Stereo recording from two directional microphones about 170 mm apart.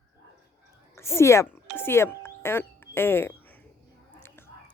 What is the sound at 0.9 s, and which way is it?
Speech, 15° left (ahead or behind).